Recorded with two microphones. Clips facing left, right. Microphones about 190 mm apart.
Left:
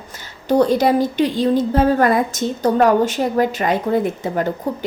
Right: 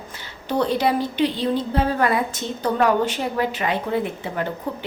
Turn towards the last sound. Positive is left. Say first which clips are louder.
# left 5 dB
turn(degrees=40)  # may be behind; listen again after turning